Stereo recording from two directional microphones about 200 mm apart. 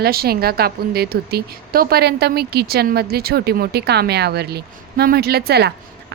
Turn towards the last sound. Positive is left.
turn(degrees=-55)  # may be behind; listen again after turning